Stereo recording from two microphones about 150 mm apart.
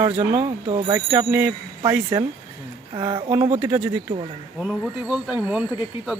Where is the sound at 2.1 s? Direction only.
20° right (ahead or behind).